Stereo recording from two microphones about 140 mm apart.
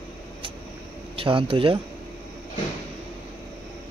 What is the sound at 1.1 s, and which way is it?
Speech, 40° right (ahead or behind).